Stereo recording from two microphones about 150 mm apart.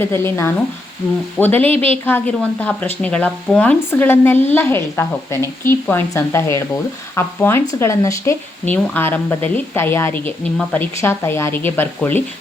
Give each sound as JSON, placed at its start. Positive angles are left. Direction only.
{"t": 0.0, "sound": "a woman's voice", "side_deg": 15}